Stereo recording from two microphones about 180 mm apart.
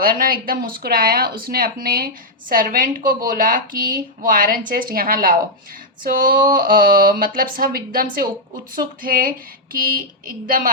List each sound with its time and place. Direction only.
0.0 s a woman's voice: 55° right (ahead or behind)